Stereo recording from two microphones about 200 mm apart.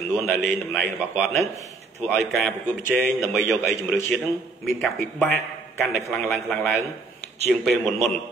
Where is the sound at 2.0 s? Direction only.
Centre (ahead or behind).